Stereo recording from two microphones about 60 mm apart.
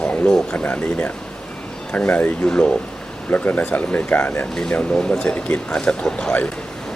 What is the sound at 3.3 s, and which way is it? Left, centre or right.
Speech, left.